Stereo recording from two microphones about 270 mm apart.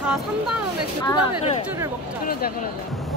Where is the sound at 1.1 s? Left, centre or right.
Centre.